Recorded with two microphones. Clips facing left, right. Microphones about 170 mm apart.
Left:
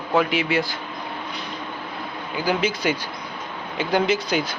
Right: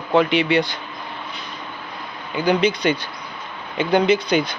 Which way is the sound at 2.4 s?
5° left (ahead or behind).